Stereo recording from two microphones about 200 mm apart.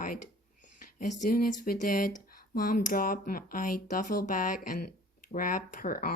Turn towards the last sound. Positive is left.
turn(degrees=45)  # may be behind; listen again after turning